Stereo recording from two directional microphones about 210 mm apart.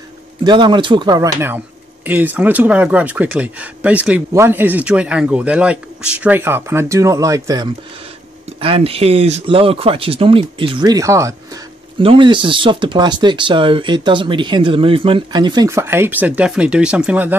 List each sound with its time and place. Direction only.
0.4 s speech: 20° right (ahead or behind)